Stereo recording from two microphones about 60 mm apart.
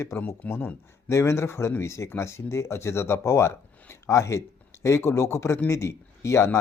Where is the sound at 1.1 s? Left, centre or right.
Left.